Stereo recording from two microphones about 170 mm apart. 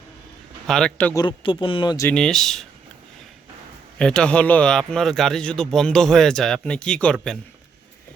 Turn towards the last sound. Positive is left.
turn(degrees=5)  # may be behind; listen again after turning